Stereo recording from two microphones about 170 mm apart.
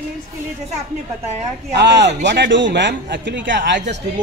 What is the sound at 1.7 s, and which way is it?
Speech, 90° right.